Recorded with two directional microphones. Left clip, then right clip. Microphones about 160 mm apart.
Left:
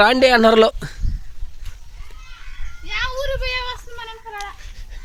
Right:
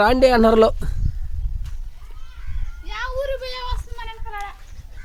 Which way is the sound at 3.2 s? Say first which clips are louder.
Left 3 dB; 75° right (ahead or behind).